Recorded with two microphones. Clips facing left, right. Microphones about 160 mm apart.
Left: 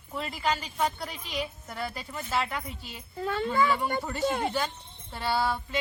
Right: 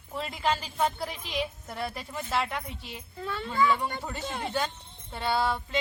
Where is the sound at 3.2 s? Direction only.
45° left (ahead or behind).